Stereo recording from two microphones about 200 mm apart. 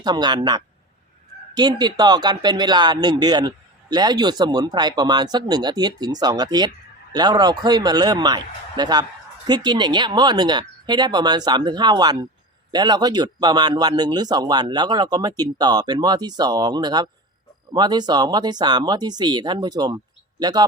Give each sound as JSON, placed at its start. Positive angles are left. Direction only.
{"t": 0.0, "sound": "speech", "side_deg": -20}